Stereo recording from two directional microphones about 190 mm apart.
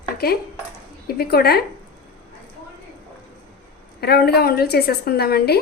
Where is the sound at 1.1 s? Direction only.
55° left (ahead or behind).